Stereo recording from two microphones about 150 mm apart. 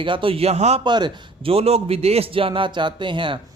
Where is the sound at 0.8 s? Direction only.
30° right (ahead or behind).